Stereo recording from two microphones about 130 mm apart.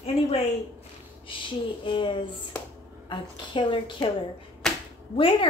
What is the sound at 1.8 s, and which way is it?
A woman's voice, 40° left (ahead or behind).